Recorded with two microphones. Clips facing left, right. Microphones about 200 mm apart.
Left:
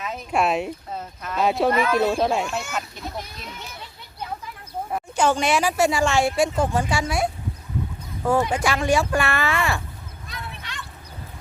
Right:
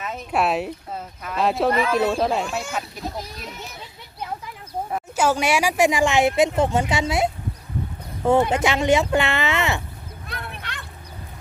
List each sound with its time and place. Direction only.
0.0 s speech: 5° right (ahead or behind)
4.9 s a woman's voice: 5° right (ahead or behind); by 7.3 s 20° right (ahead or behind)
8.4 s speech: 20° right (ahead or behind)
10.2 s a sound: 60° right (ahead or behind)